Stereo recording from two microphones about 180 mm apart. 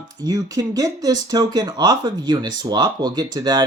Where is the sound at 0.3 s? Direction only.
20° right (ahead or behind).